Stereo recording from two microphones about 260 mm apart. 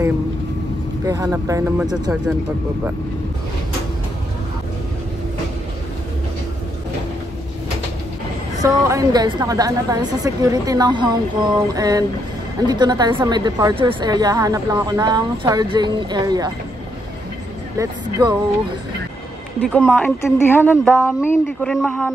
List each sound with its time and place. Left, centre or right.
1.0 s a woman's voice: centre
8.6 s a woman's voice: centre
19.6 s speech: centre